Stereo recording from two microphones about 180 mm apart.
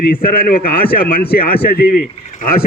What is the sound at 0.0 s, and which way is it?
A man's voice, 55° left (ahead or behind).